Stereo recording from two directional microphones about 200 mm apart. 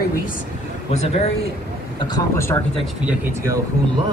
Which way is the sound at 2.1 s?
15° left (ahead or behind).